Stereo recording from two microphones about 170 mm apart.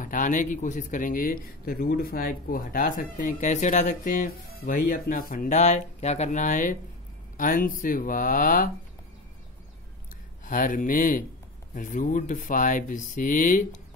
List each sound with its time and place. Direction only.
0.0 s speech: 50° left (ahead or behind)
4.6 s speech: 60° left (ahead or behind)
10.4 s speech: 50° left (ahead or behind)